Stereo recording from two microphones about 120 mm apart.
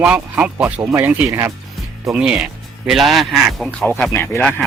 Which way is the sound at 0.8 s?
20° right (ahead or behind).